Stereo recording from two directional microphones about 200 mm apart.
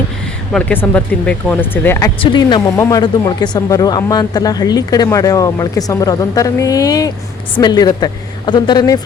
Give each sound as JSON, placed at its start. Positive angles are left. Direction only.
{"t": 0.5, "sound": "speech", "side_deg": 10}
{"t": 2.1, "sound": "speech", "side_deg": 25}